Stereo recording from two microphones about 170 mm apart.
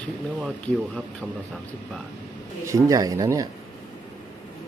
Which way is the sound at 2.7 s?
20° right (ahead or behind).